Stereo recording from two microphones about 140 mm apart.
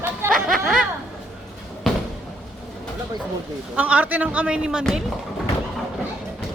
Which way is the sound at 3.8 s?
10° right (ahead or behind).